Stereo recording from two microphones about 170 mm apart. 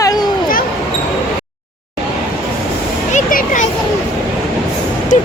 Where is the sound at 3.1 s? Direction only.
50° left (ahead or behind).